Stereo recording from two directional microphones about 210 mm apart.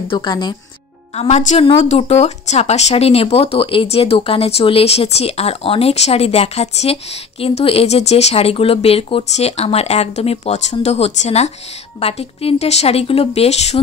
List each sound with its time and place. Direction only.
0.1 s speech: 20° left (ahead or behind)